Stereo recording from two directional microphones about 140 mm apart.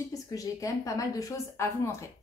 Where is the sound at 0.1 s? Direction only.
25° left (ahead or behind).